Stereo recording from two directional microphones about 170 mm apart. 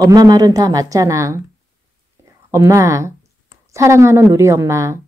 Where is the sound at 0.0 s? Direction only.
20° right (ahead or behind).